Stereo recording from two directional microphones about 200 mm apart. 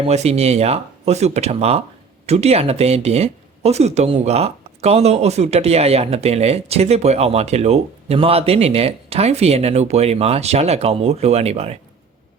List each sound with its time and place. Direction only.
0.0 s speech: 30° right (ahead or behind)